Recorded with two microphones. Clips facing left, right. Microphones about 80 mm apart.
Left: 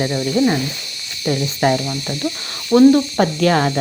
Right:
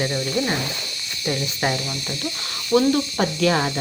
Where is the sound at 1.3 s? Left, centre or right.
Left.